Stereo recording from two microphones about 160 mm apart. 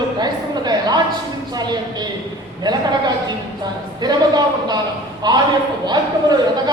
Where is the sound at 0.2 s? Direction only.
25° right (ahead or behind).